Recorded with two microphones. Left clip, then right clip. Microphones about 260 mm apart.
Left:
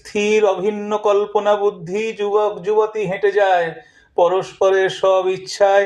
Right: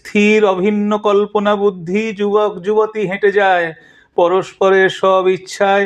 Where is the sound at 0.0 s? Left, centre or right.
Right.